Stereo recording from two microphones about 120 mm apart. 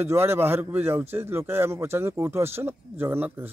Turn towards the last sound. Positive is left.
turn(degrees=-15)  # may be behind; listen again after turning